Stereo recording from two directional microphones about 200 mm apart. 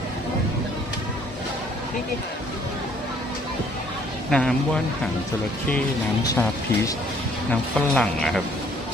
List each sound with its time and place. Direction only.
4.3 s speech: 5° left (ahead or behind)
6.2 s speech: 15° left (ahead or behind)
7.5 s speech: 5° left (ahead or behind)